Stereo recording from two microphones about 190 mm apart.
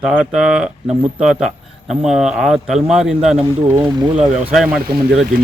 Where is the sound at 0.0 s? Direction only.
5° right (ahead or behind).